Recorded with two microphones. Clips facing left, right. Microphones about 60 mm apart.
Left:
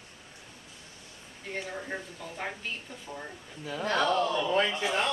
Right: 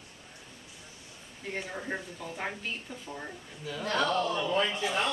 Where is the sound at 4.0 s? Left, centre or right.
Centre.